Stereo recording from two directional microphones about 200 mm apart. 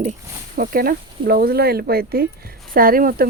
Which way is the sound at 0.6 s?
45° right (ahead or behind).